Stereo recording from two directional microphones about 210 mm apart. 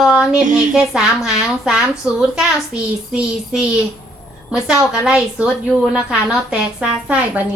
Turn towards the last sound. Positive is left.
turn(degrees=-5)  # may be behind; listen again after turning